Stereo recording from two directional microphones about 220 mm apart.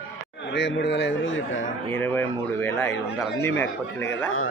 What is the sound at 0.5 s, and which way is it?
A man's voice, 55° left (ahead or behind).